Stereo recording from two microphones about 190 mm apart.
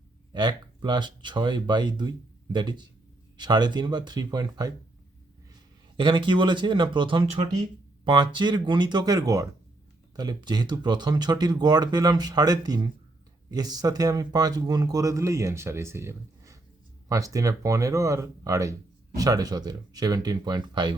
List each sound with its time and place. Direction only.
0.3 s speech: 25° right (ahead or behind)
6.0 s speech: 25° right (ahead or behind)